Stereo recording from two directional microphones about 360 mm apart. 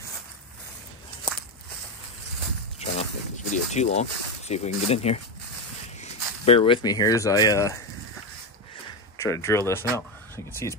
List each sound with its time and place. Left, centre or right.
2.8 s a sound: centre
4.8 s speech: centre
9.2 s speech: centre